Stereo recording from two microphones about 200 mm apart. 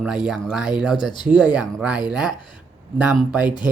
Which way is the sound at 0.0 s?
5° right (ahead or behind).